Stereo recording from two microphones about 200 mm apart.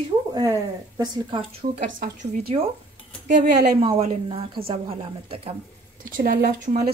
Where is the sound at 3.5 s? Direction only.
55° right (ahead or behind).